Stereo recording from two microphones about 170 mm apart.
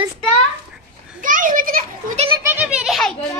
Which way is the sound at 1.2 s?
50° right (ahead or behind).